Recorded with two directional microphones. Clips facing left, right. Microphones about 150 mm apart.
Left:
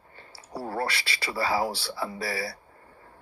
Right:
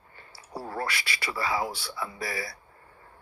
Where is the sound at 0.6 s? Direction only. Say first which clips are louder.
Left 3 dB; 30° left (ahead or behind).